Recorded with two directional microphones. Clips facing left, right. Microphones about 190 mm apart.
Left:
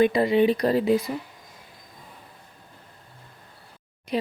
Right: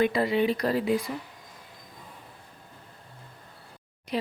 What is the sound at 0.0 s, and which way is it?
Speech, 20° left (ahead or behind).